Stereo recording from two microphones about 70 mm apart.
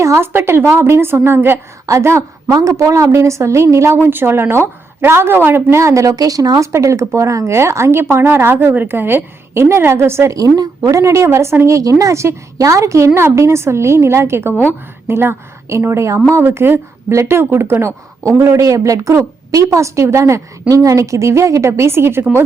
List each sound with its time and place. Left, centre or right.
0.0 s speech: right
2.5 s a woman's voice: right
2.7 s speech: right
3.9 s speech: right
5.8 s speech: right
10.3 s speech: right